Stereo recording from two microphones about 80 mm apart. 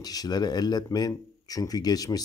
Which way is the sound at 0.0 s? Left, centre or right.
Left.